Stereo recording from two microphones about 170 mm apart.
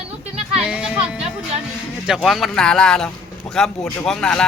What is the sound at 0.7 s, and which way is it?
Music, 5° right (ahead or behind).